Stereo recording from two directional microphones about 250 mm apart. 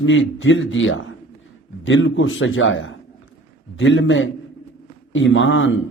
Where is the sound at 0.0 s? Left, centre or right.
Left.